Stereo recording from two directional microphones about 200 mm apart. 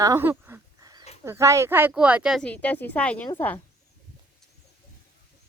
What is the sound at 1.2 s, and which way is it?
Speech, 15° right (ahead or behind).